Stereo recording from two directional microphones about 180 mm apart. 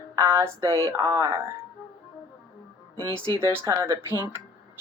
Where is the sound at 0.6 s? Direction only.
25° right (ahead or behind).